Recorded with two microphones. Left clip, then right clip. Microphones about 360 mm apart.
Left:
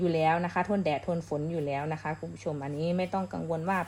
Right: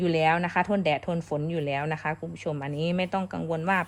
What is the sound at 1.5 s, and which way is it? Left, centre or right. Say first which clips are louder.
Speech: right 3 dB; right.